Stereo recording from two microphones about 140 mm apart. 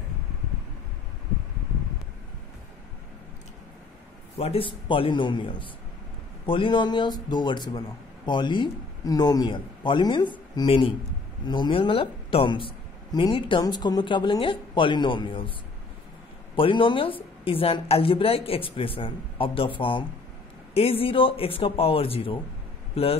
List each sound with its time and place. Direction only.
4.4 s speech: 45° left (ahead or behind)
16.5 s a man's voice: 40° left (ahead or behind)